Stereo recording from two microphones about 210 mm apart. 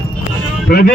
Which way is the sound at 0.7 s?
45° left (ahead or behind).